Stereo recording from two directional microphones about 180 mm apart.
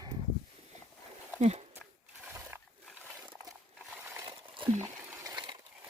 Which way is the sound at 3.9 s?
10° right (ahead or behind).